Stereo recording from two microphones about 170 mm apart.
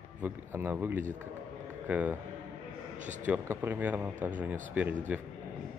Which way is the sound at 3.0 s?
45° right (ahead or behind).